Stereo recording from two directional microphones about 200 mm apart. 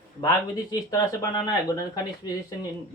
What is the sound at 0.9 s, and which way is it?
Speech, 15° left (ahead or behind).